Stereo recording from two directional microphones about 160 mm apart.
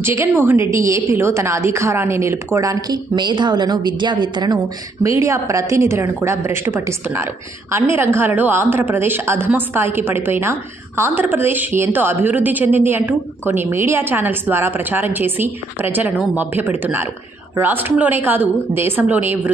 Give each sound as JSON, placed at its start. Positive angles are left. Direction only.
{"t": 0.0, "sound": "a woman's voice", "side_deg": -15}